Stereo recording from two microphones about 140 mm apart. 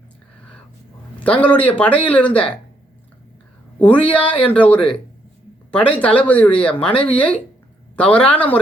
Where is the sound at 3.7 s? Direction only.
10° left (ahead or behind).